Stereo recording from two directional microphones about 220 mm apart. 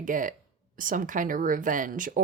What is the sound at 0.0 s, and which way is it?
Speech, 35° right (ahead or behind).